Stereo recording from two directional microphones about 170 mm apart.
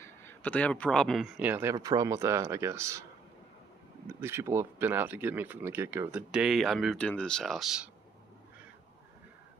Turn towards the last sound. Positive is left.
turn(degrees=0)  # may be behind; listen again after turning